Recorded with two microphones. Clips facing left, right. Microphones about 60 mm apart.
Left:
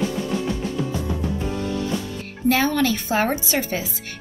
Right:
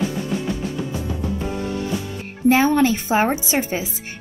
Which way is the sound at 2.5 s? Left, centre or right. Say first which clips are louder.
Right 4 dB; right.